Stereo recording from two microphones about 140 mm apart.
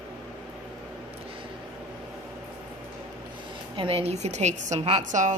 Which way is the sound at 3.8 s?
45° right (ahead or behind).